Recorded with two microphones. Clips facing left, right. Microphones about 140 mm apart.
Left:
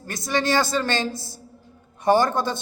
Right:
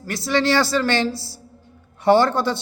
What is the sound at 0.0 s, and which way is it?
A woman's voice, 20° left (ahead or behind).